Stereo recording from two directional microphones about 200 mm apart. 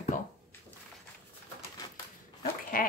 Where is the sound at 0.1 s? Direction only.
40° left (ahead or behind).